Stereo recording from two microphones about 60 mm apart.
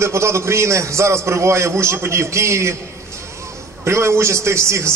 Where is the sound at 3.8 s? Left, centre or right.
Right.